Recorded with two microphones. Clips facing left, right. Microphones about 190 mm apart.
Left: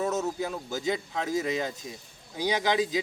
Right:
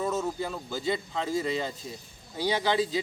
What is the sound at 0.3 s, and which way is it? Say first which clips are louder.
Speech: left 1 dB; 10° left (ahead or behind).